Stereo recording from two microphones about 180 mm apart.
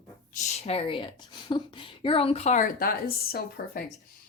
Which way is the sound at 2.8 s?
55° left (ahead or behind).